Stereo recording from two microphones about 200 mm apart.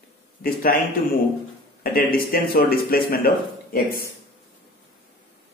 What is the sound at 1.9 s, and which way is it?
Speech, 45° left (ahead or behind).